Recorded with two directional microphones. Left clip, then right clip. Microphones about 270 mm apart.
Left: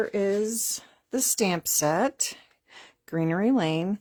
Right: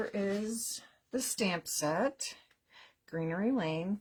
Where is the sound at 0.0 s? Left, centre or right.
Left.